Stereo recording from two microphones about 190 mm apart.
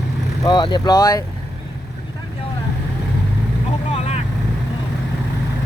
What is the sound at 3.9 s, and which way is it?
Vehicle, 35° left (ahead or behind).